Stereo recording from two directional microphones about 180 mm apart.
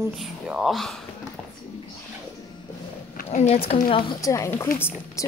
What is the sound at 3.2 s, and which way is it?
Speech, 35° left (ahead or behind).